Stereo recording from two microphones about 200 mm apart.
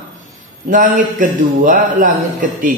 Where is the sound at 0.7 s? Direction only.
40° right (ahead or behind).